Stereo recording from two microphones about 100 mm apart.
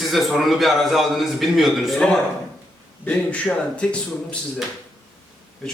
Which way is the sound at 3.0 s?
15° left (ahead or behind).